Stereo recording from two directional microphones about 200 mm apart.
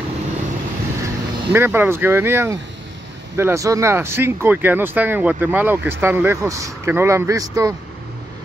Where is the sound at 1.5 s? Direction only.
10° right (ahead or behind).